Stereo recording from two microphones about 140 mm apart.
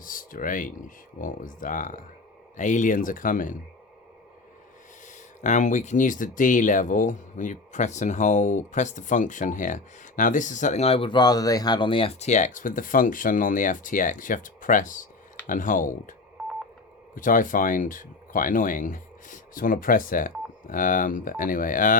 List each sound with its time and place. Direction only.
0.0 s speech: 80° left
5.0 s speech: 60° left (ahead or behind)
17.2 s speech: 70° left (ahead or behind)